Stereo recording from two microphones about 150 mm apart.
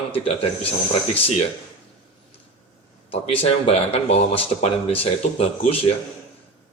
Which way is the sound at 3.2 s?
40° left (ahead or behind).